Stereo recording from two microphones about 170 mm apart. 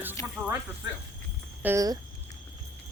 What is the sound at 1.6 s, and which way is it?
Speech, 10° right (ahead or behind).